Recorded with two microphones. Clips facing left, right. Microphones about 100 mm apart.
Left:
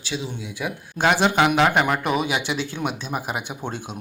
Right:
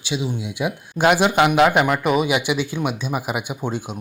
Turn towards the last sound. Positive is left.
turn(degrees=-5)  # may be behind; listen again after turning